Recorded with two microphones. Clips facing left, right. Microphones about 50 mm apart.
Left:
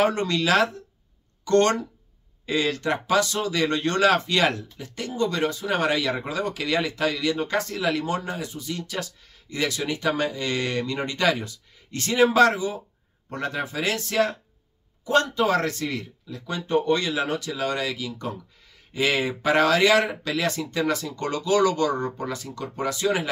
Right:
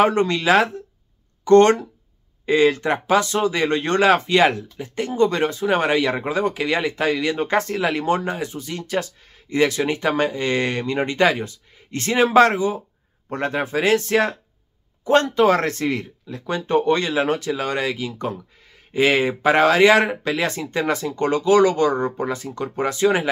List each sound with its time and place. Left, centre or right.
0.0 s speech: right